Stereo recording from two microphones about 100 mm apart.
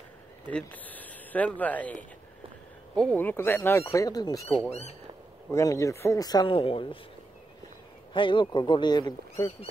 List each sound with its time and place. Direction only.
0.5 s speech: 15° left (ahead or behind)
3.2 s speech: 20° left (ahead or behind); by 4.5 s 40° left (ahead or behind)
4.6 s speech: 90° left
5.5 s speech: 35° left (ahead or behind)
6.2 s speech: 40° left (ahead or behind)
6.5 s speech: 65° left (ahead or behind)
8.1 s speech: 55° left (ahead or behind)